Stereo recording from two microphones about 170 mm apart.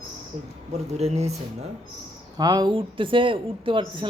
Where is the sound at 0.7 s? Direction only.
40° right (ahead or behind).